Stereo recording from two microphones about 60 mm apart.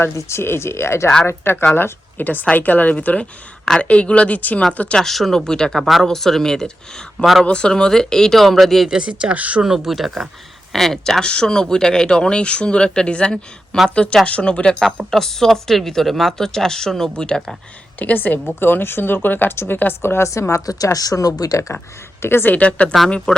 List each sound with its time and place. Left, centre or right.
0.1 s speech: left
1.7 s a woman's voice: left
4.9 s speech: centre
5.8 s speech: centre
8.9 s speech: centre
9.6 s speech: centre
11.2 s speech: centre
15.1 s speech: centre
18.0 s a woman's voice: left
20.5 s speech: left
22.2 s a woman's voice: left
22.5 s a woman's voice: left